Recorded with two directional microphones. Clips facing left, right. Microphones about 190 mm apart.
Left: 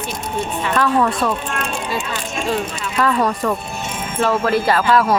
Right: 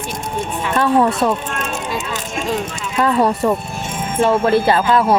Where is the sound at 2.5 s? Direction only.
25° right (ahead or behind).